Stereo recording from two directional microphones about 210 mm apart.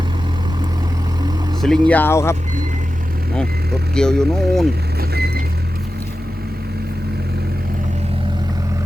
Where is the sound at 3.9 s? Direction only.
5° left (ahead or behind).